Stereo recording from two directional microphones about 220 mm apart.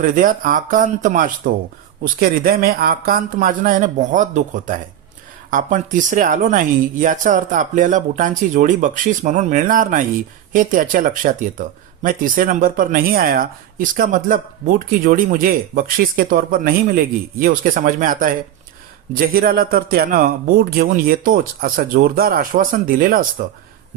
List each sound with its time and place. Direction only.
0.0 s speech: 40° right (ahead or behind)